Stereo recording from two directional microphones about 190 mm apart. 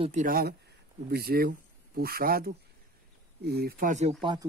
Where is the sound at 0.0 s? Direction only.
40° right (ahead or behind).